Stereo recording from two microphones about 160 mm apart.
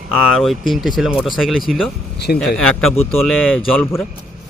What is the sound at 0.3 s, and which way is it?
Speech, centre (ahead or behind).